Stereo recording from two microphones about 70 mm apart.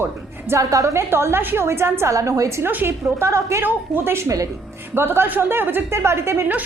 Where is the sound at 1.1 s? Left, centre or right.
Right.